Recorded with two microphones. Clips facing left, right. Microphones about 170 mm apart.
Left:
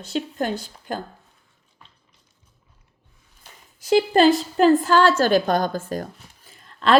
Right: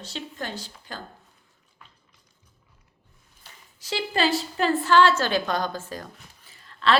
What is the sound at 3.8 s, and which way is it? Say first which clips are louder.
Speech: left 10 dB; 50° left (ahead or behind).